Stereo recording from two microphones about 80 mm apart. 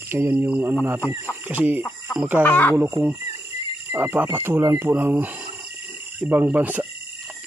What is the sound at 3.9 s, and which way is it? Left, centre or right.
Speech, right.